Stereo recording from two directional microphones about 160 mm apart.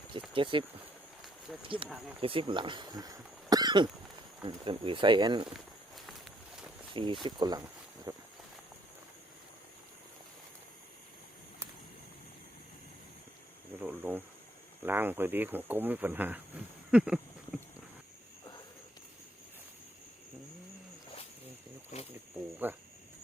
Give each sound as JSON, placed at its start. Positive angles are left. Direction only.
{"t": 0.3, "sound": "speech", "side_deg": -30}
{"t": 1.6, "sound": "speech", "side_deg": -30}
{"t": 6.1, "sound": "walk", "side_deg": 0}
{"t": 6.9, "sound": "speech", "side_deg": -30}
{"t": 8.1, "sound": "a sound", "side_deg": -25}
{"t": 13.7, "sound": "a sound", "side_deg": -10}
{"t": 14.8, "sound": "speech", "side_deg": -15}
{"t": 21.9, "sound": "wild animals", "side_deg": 45}
{"t": 22.6, "sound": "speech", "side_deg": -10}